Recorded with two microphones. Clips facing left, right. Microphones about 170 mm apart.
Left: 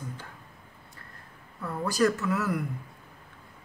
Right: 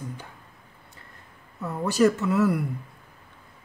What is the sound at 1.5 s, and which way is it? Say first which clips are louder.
Speech: right 4 dB; 25° right (ahead or behind).